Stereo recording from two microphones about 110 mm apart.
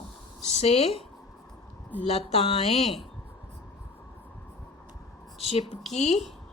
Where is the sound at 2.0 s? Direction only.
75° left (ahead or behind).